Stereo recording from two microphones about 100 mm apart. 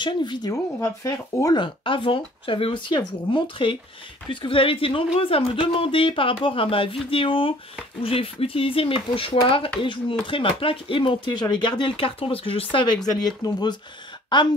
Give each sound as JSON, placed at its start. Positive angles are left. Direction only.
{"t": 0.0, "sound": "speech", "side_deg": 50}
{"t": 0.5, "sound": "speech", "side_deg": 30}
{"t": 1.5, "sound": "speech", "side_deg": 55}
{"t": 11.4, "sound": "speech", "side_deg": 50}
{"t": 13.2, "sound": "speech", "side_deg": 45}